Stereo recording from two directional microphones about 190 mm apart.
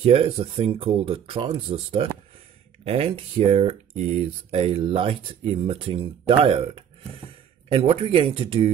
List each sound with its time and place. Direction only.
0.0 s speech: 30° right (ahead or behind)